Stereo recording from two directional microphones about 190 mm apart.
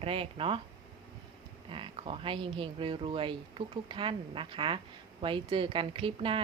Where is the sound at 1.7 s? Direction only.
30° right (ahead or behind).